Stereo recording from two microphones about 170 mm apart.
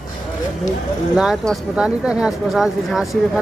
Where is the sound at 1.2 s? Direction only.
5° right (ahead or behind).